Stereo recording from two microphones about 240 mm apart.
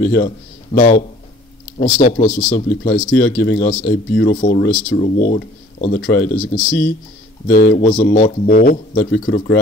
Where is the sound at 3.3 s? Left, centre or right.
Left.